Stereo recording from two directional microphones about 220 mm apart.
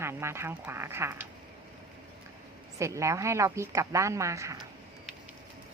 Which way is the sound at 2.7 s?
15° right (ahead or behind).